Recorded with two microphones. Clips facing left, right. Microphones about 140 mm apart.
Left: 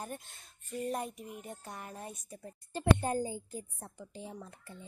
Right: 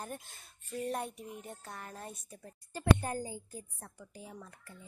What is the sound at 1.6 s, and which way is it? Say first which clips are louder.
Speech: left 1 dB; 10° left (ahead or behind).